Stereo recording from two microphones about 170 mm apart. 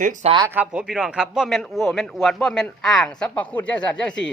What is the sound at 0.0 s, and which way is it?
Speech, 50° right (ahead or behind).